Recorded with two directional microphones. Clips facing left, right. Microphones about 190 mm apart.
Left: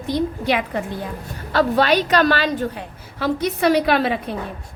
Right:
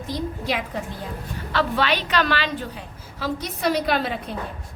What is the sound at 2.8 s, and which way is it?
A woman's voice, 60° left (ahead or behind).